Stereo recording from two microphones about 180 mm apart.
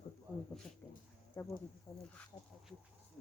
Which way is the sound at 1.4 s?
15° left (ahead or behind).